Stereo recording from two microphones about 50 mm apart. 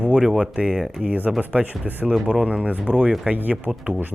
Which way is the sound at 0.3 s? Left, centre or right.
Centre.